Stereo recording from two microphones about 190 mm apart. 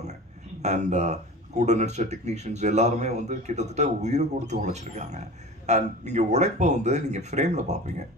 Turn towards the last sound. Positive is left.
turn(degrees=-35)  # may be behind; listen again after turning